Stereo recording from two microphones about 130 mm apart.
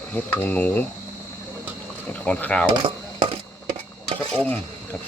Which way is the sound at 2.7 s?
40° right (ahead or behind).